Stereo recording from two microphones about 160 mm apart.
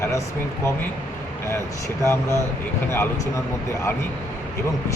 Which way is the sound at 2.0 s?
20° left (ahead or behind).